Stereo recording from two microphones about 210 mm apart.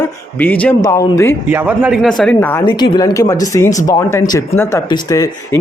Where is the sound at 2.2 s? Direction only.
10° left (ahead or behind).